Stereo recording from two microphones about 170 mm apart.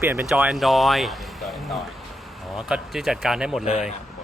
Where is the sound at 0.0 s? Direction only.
15° right (ahead or behind).